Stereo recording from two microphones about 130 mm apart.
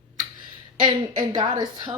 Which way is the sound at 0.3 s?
35° right (ahead or behind).